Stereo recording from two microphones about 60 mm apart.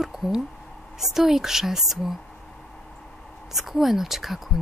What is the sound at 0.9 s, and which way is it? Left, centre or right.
Speech, centre.